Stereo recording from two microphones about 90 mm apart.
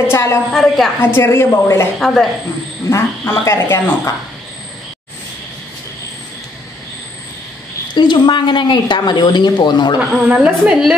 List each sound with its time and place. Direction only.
0.1 s a woman's voice: 30° left (ahead or behind)
0.5 s a woman's voice: 5° left (ahead or behind)
1.0 s a woman's voice: 25° left (ahead or behind)
2.0 s a woman's voice: 5° left (ahead or behind)
2.9 s speech: 35° left (ahead or behind)
7.9 s speech: 60° left (ahead or behind)
9.9 s a woman's voice: 15° right (ahead or behind)